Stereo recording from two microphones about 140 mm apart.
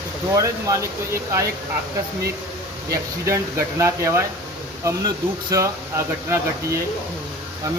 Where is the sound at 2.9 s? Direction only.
20° right (ahead or behind).